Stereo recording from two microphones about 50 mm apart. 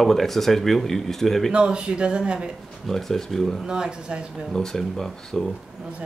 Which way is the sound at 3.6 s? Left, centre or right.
Centre.